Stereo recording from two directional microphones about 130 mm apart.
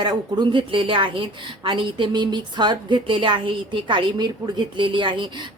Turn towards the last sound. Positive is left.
turn(degrees=-40)  # may be behind; listen again after turning